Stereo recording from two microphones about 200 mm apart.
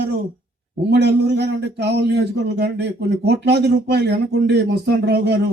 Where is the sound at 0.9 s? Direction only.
60° right (ahead or behind).